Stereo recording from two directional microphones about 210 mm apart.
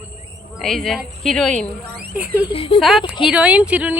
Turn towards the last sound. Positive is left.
turn(degrees=-5)  # may be behind; listen again after turning